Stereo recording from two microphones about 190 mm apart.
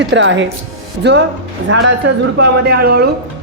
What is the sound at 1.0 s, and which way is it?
Speech, 65° right (ahead or behind).